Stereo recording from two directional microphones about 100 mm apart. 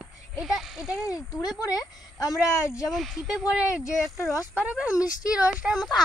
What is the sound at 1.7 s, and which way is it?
Speech, 40° left (ahead or behind).